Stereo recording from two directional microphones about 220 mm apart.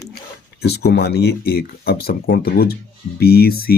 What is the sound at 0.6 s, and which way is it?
Speech, 45° left (ahead or behind).